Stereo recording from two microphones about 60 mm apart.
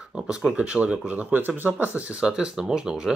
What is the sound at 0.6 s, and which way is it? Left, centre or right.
Speech, centre.